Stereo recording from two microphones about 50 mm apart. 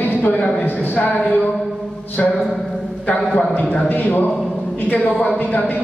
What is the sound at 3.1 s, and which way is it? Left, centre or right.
Speech, left.